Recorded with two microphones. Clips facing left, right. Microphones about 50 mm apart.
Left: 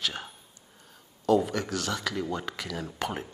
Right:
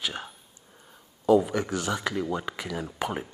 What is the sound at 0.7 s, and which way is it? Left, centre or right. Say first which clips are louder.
Speech: right 2 dB; centre.